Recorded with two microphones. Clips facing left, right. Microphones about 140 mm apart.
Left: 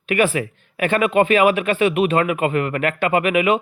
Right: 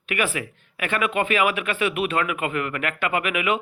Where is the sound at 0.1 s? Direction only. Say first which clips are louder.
Left 7 dB; 30° left (ahead or behind).